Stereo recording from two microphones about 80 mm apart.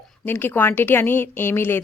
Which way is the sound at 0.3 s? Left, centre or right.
Left.